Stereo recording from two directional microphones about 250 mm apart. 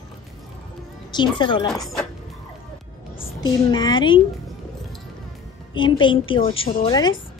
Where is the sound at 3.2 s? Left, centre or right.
Centre.